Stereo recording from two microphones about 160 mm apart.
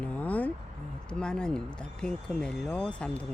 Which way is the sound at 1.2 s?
5° left (ahead or behind).